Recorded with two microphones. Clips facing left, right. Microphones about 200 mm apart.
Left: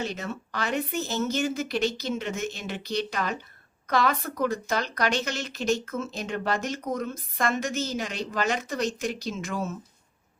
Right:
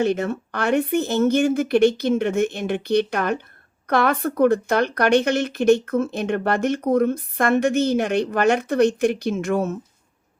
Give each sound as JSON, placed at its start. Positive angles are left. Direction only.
{"t": 0.0, "sound": "speech", "side_deg": -55}